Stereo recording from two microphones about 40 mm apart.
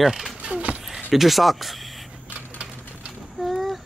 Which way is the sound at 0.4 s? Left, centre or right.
Right.